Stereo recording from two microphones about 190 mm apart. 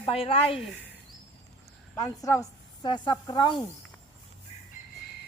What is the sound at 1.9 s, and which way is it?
A woman's voice, 15° left (ahead or behind).